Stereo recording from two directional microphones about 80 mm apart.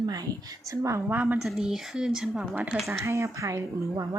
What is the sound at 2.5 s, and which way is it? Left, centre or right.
Speech, centre.